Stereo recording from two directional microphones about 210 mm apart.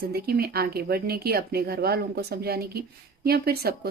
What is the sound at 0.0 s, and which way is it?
A woman's voice, 45° right (ahead or behind).